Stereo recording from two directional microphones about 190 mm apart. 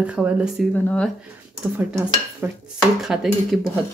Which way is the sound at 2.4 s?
10° right (ahead or behind).